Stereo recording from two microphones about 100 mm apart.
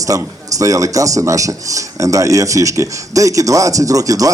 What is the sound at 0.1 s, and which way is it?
Speech, 35° right (ahead or behind).